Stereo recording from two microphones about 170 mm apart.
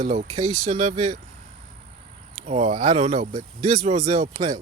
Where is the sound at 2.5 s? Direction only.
45° right (ahead or behind).